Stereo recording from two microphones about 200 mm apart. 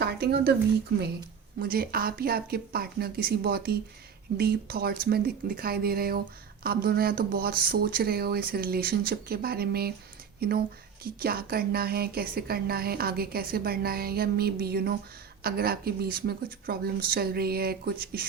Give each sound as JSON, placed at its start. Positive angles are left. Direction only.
{"t": 0.0, "sound": "speech", "side_deg": -50}
{"t": 1.5, "sound": "speech", "side_deg": -45}
{"t": 11.0, "sound": "speech", "side_deg": -50}